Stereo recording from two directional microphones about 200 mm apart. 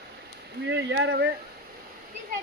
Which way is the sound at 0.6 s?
65° right (ahead or behind).